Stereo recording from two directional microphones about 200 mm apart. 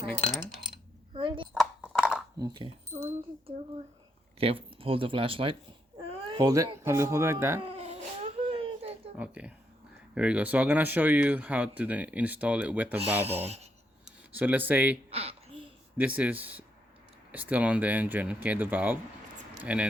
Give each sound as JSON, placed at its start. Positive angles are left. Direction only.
{"t": 1.1, "sound": "speech", "side_deg": -25}
{"t": 1.5, "sound": "a sound", "side_deg": 0}
{"t": 2.4, "sound": "speech", "side_deg": -25}
{"t": 7.6, "sound": "crying", "side_deg": -30}
{"t": 9.1, "sound": "speech", "side_deg": -5}
{"t": 13.0, "sound": "speech", "side_deg": -30}
{"t": 14.3, "sound": "speech", "side_deg": -10}
{"t": 15.1, "sound": "a sound", "side_deg": -30}
{"t": 16.0, "sound": "speech", "side_deg": -5}